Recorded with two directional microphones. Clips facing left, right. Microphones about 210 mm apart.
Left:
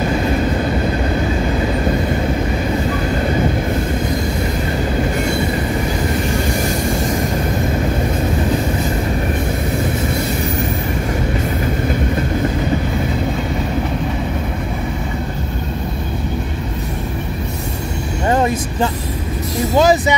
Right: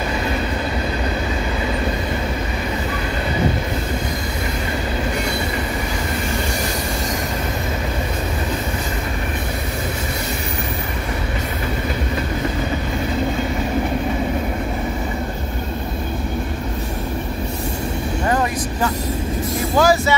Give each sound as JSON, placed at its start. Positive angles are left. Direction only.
{"t": 18.3, "sound": "vehicle", "side_deg": 25}
{"t": 19.8, "sound": "music", "side_deg": 20}